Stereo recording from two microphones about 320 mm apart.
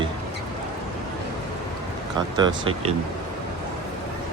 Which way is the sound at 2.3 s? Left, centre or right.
Centre.